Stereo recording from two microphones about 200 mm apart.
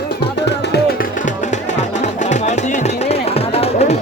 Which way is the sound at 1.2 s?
35° left (ahead or behind).